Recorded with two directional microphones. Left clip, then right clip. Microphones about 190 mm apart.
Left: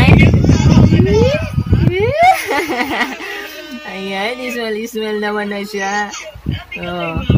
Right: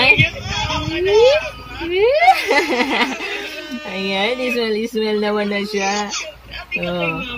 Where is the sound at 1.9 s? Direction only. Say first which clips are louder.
Left 1 dB; 15° left (ahead or behind).